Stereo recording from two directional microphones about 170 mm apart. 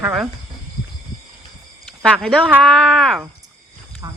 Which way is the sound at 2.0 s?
5° left (ahead or behind).